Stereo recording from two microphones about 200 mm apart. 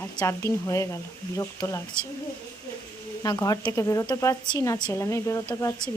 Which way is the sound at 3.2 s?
15° left (ahead or behind).